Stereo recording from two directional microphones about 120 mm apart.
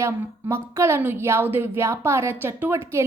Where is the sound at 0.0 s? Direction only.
25° right (ahead or behind).